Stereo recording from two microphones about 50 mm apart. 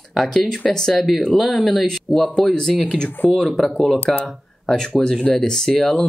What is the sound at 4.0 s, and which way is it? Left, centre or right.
Speech, left.